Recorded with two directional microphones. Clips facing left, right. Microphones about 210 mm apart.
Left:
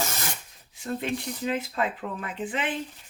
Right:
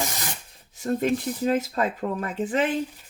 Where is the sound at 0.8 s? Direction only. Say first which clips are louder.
Right 6 dB; 45° right (ahead or behind).